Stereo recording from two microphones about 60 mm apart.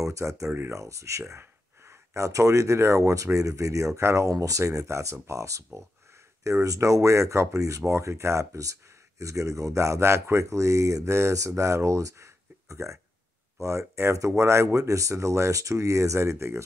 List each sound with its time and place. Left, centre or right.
0.0 s speech: right
1.4 s speech: right